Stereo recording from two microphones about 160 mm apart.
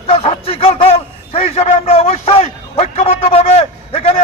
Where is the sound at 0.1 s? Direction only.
35° left (ahead or behind).